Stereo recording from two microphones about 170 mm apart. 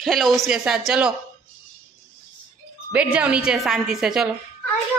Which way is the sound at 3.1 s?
5° right (ahead or behind).